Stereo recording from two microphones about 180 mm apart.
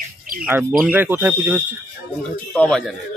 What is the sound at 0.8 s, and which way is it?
Speech, 10° right (ahead or behind).